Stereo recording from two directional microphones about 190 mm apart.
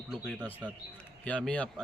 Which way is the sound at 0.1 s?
Centre (ahead or behind).